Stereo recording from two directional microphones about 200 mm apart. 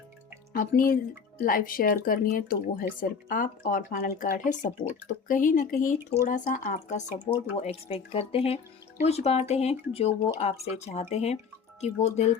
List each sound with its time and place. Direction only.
0.5 s speech: 45° left (ahead or behind)